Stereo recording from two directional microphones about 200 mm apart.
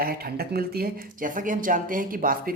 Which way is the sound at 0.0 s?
50° right (ahead or behind).